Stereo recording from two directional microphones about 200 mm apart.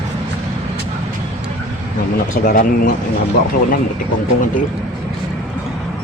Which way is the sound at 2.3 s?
45° left (ahead or behind).